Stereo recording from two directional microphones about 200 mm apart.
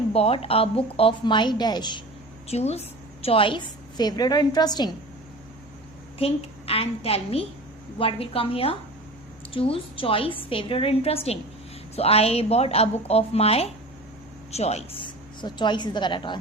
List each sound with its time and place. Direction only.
0.1 s a woman's voice: 30° left (ahead or behind)
2.5 s a woman's voice: 30° left (ahead or behind)
6.1 s a woman's voice: 30° left (ahead or behind)